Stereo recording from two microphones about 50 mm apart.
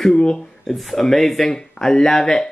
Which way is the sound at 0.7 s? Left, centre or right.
Centre.